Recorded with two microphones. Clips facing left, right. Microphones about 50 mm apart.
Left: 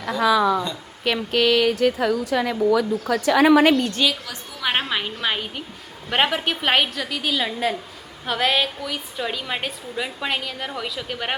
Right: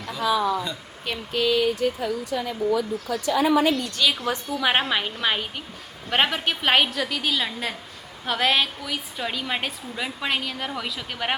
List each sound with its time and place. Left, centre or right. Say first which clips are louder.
0.1 s a sound: left 5 dB; left
1.0 s speech: left 5 dB; left
3.8 s a woman's voice: left 6 dB; left
4.3 s a woman's voice: right 9 dB; right
4.6 s a woman's voice: even; centre